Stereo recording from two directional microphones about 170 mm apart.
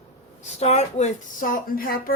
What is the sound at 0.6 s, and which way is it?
A woman's voice, 40° left (ahead or behind).